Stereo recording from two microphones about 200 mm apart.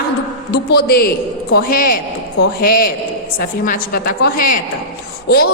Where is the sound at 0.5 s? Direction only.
50° left (ahead or behind).